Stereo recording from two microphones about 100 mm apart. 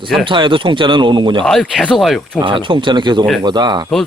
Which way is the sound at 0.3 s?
55° right (ahead or behind).